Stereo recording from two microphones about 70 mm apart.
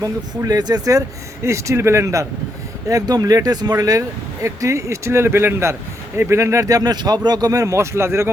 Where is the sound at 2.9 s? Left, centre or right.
Right.